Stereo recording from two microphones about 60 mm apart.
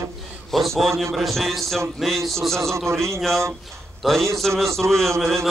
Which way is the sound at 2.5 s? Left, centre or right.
Right.